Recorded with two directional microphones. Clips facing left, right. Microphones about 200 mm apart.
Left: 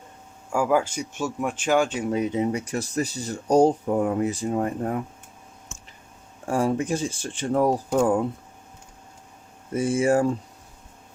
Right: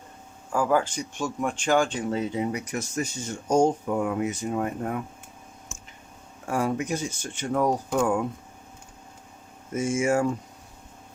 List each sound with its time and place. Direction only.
0.5 s speech: 10° left (ahead or behind); by 5.0 s 35° left (ahead or behind)
6.5 s speech: 30° left (ahead or behind)
9.7 s speech: 35° left (ahead or behind)